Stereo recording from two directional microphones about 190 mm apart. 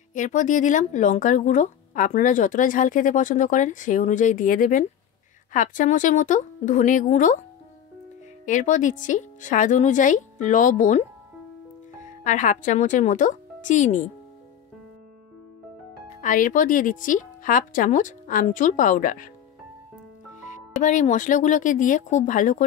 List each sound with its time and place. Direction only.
0.1 s speech: 40° left (ahead or behind)
8.5 s speech: 40° left (ahead or behind)
12.2 s speech: 45° left (ahead or behind)
16.2 s speech: 45° left (ahead or behind)
20.8 s speech: 40° left (ahead or behind)